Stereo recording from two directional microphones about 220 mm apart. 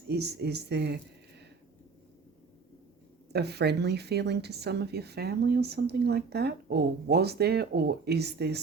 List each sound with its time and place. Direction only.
0.1 s a woman's voice: 50° right (ahead or behind)
3.3 s a woman's voice: 50° right (ahead or behind)